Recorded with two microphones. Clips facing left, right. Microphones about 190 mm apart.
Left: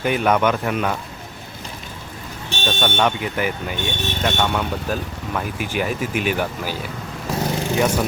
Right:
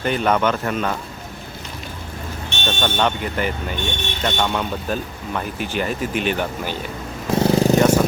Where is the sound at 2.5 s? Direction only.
35° left (ahead or behind).